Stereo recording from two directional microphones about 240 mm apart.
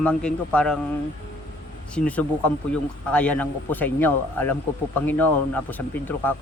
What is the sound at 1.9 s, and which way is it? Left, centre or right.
Speech, centre.